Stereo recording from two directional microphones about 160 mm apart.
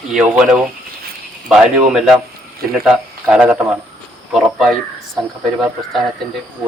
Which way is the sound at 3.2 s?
10° right (ahead or behind).